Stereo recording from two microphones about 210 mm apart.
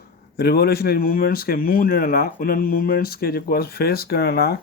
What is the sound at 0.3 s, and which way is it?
Speech, 50° left (ahead or behind).